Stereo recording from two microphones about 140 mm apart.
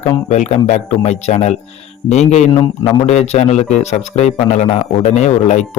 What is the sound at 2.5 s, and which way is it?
A man's voice, 35° left (ahead or behind).